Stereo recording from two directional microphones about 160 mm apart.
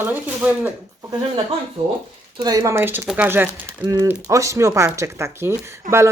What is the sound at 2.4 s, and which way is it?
A woman's voice, 25° right (ahead or behind).